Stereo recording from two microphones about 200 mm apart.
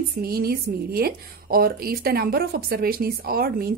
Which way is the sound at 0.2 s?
50° right (ahead or behind).